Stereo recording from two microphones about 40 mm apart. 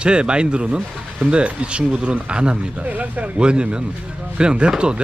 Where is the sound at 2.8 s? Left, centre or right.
Right.